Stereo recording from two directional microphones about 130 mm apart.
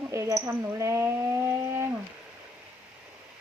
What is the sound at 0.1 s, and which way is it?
Speech, 20° right (ahead or behind).